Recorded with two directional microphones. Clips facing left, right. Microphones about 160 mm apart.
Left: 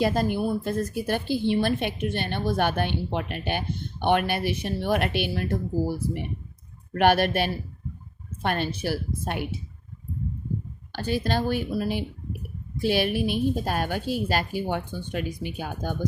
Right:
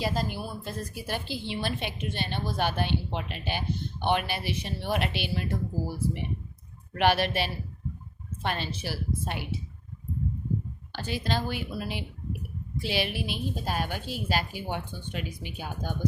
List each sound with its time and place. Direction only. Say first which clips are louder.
0.0 s a woman's voice: left 7 dB; 55° left (ahead or behind)
6.9 s a woman's voice: left 4 dB; 50° left (ahead or behind)
10.9 s a woman's voice: left 5 dB; 50° left (ahead or behind)